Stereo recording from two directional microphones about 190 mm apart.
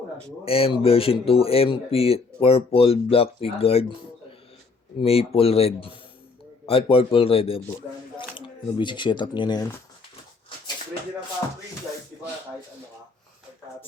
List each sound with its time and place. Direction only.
0.4 s speech: 30° left (ahead or behind)
5.0 s speech: 30° left (ahead or behind)